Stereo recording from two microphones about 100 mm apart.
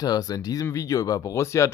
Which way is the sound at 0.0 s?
40° left (ahead or behind).